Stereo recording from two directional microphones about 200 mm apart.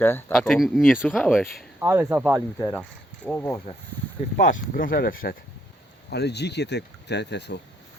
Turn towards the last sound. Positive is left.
turn(degrees=60)  # may be behind; listen again after turning